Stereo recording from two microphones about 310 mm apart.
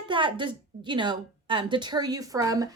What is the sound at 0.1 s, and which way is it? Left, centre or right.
A woman's voice, centre.